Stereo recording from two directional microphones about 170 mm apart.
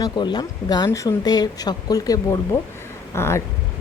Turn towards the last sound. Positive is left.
turn(degrees=15)  # may be behind; listen again after turning